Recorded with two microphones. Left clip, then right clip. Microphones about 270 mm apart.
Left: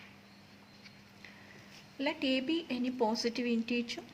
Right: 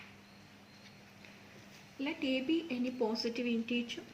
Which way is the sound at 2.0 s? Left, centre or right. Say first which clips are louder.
Left 3 dB; left.